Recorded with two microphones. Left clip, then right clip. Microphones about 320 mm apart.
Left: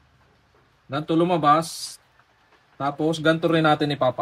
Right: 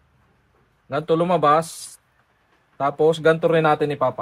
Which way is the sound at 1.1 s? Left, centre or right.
Right.